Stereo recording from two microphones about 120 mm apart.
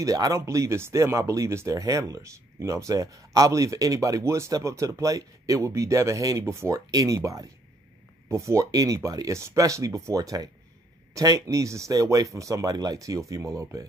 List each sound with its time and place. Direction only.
0.0 s speech: 30° right (ahead or behind)